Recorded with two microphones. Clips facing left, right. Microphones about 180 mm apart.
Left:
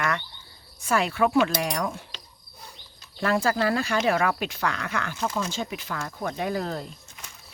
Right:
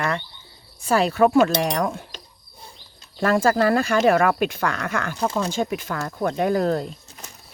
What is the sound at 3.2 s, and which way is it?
Speech, 50° right (ahead or behind).